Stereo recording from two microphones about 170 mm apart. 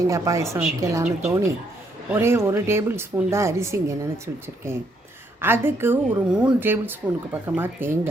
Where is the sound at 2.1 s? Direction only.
15° right (ahead or behind).